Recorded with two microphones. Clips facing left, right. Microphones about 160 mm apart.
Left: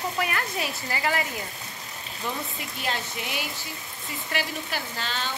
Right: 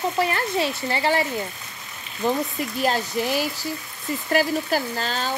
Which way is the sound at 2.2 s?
40° right (ahead or behind).